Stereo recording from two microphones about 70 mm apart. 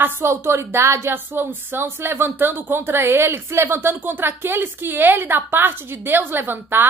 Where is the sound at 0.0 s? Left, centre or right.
Right.